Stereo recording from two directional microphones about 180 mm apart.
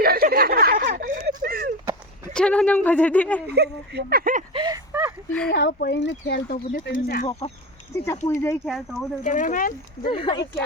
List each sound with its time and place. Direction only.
0.0 s a sound: 60° right (ahead or behind)
2.3 s speech: 5° left (ahead or behind)
3.5 s speech: 65° right (ahead or behind); by 4.4 s 50° right (ahead or behind)
4.5 s a sound: 25° right (ahead or behind)
5.5 s speech: 70° left (ahead or behind); by 6.9 s 55° left (ahead or behind)
6.9 s speech: 70° left (ahead or behind)
7.3 s speech: 35° left (ahead or behind)
7.9 s speech: 15° left (ahead or behind)
8.6 s speech: centre (ahead or behind)
9.2 s speech: 45° left (ahead or behind)
10.1 s speech: 30° left (ahead or behind)